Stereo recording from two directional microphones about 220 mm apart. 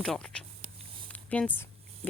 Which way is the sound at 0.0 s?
5° left (ahead or behind).